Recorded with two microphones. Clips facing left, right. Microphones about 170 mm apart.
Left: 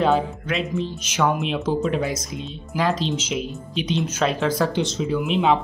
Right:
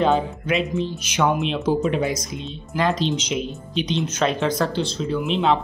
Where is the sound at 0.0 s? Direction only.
Centre (ahead or behind).